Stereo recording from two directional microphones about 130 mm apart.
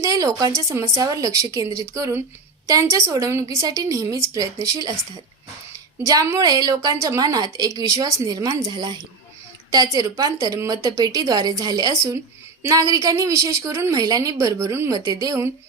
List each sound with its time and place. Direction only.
0.0 s a woman's voice: 25° right (ahead or behind)
6.1 s a woman's voice: 25° right (ahead or behind)